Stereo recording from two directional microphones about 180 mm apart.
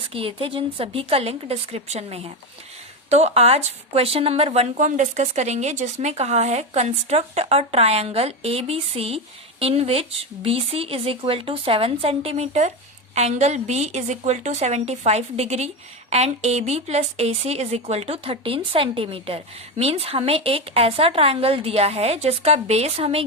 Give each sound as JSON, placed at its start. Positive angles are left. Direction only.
{"t": 0.1, "sound": "speech", "side_deg": -30}